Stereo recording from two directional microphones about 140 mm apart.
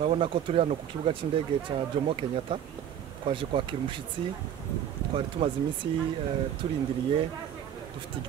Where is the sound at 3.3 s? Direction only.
40° right (ahead or behind).